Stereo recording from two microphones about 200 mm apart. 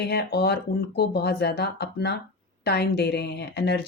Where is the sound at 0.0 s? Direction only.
55° left (ahead or behind).